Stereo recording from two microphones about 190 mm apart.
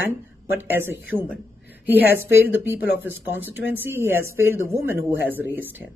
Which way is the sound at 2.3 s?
10° right (ahead or behind).